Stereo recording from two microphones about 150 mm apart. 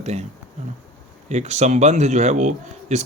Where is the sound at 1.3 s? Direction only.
50° right (ahead or behind).